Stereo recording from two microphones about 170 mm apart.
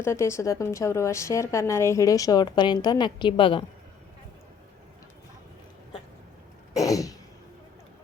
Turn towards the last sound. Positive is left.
turn(degrees=20)  # may be behind; listen again after turning